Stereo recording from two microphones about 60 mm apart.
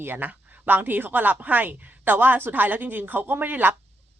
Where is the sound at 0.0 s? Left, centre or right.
Right.